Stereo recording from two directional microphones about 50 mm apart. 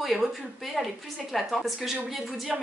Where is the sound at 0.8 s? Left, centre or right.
Centre.